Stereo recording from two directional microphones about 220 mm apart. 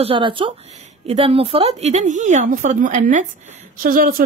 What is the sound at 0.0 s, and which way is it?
A woman's voice, 25° right (ahead or behind).